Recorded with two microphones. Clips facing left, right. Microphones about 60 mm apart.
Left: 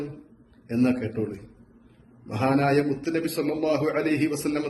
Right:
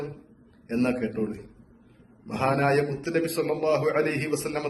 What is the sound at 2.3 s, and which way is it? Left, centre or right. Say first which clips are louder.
A man's voice: left 1 dB; right.